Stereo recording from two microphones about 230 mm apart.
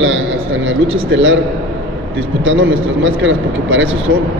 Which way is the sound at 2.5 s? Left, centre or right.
Right.